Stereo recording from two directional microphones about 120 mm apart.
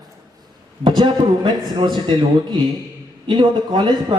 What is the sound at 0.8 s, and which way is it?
A man's voice, 45° right (ahead or behind).